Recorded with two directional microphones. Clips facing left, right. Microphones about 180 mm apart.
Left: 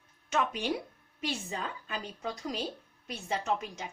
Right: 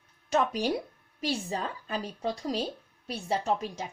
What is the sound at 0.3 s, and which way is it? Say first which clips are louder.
A woman's voice: right 4 dB; 35° right (ahead or behind).